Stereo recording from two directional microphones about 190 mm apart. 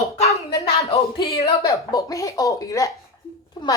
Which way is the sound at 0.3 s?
15° left (ahead or behind).